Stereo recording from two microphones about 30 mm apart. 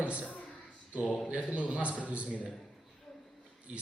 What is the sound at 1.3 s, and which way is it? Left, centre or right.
A man's voice, right.